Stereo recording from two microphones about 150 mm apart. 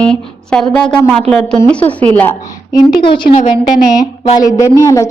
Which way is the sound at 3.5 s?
25° left (ahead or behind).